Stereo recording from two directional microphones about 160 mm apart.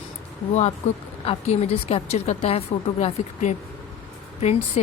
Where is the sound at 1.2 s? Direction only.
35° left (ahead or behind).